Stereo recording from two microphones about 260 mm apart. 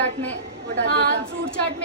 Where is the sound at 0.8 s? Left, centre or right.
Right.